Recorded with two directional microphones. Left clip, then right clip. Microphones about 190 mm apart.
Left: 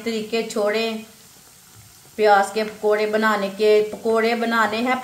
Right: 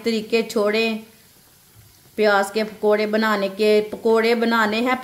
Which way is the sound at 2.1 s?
55° right (ahead or behind).